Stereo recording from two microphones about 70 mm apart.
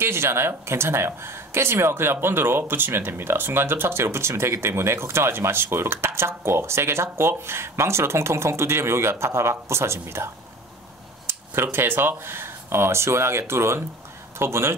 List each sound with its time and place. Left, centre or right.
0.0 s speech: right